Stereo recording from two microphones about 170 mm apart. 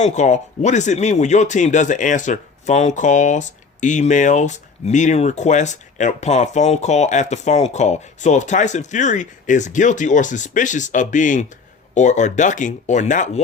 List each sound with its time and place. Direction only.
0.0 s speech: 45° left (ahead or behind)